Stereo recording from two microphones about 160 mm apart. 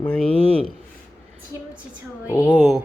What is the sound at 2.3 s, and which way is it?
Speech, 15° left (ahead or behind).